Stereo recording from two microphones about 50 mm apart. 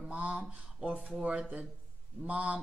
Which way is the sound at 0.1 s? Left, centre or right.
Right.